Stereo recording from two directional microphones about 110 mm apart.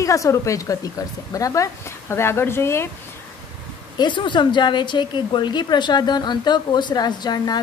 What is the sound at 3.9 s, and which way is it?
A woman's voice, 45° left (ahead or behind).